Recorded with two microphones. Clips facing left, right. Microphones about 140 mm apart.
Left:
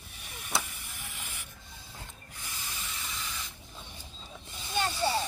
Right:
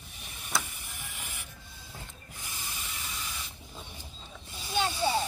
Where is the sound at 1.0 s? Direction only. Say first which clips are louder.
Right 1 dB; 15° right (ahead or behind).